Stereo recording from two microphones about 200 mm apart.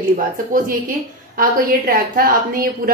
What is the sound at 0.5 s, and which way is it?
A woman's voice, 45° right (ahead or behind).